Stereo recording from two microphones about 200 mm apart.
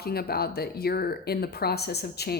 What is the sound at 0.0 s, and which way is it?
Speech, 50° left (ahead or behind).